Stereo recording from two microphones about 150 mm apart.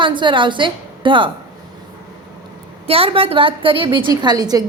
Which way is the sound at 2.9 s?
40° right (ahead or behind).